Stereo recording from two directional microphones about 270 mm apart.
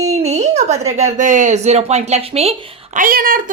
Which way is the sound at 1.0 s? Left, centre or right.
Right.